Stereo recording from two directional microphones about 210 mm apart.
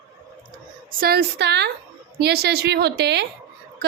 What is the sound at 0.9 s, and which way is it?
Speech, 45° right (ahead or behind).